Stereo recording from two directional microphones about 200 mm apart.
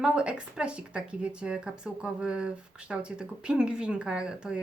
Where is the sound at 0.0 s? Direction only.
5° right (ahead or behind).